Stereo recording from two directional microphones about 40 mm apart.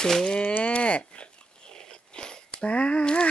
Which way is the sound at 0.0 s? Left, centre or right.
Centre.